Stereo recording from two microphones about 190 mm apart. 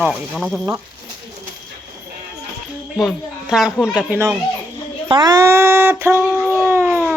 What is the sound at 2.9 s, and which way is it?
Speech, centre (ahead or behind).